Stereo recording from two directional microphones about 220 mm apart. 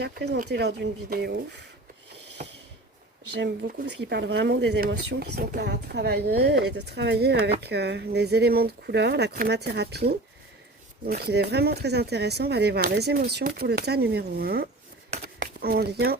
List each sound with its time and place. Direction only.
0.4 s speech: 50° right (ahead or behind)
3.3 s speech: 50° right (ahead or behind)
11.0 s speech: 45° right (ahead or behind)